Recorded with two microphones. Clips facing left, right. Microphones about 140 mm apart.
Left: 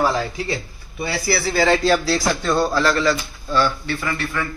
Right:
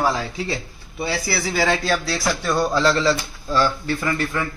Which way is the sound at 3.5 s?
35° right (ahead or behind).